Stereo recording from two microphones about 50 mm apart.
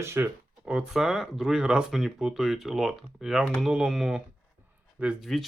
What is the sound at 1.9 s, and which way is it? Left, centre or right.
Speech, centre.